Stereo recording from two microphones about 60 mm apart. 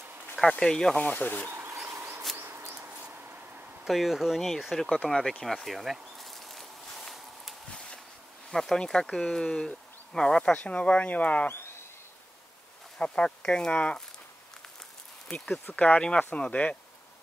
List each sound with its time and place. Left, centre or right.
0.5 s speech: centre
1.0 s speech: left
2.0 s a sound: right
3.0 s a sound: right
3.8 s speech: centre
5.4 s insect: centre
7.7 s a sound: centre
8.5 s speech: centre; by 11.5 s left
13.0 s speech: left
15.6 s speech: left